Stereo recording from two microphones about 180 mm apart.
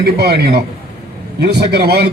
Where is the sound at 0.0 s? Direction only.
65° right (ahead or behind).